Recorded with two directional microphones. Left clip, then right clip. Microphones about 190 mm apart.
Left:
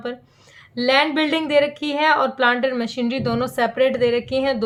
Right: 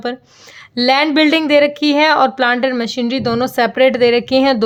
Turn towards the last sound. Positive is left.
turn(degrees=-50)  # may be behind; listen again after turning